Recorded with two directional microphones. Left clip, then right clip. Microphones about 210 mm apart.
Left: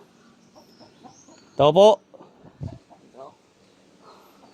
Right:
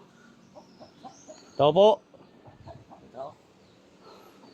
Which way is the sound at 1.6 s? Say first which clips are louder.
Left 5 dB; 35° left (ahead or behind).